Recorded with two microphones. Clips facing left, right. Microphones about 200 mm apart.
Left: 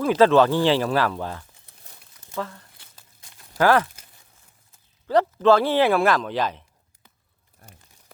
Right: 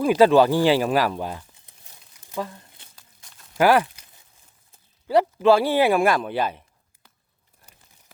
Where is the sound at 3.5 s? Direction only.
15° right (ahead or behind).